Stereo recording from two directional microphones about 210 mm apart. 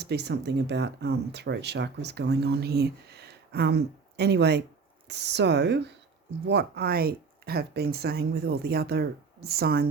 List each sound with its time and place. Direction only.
0.0 s speech: 50° right (ahead or behind)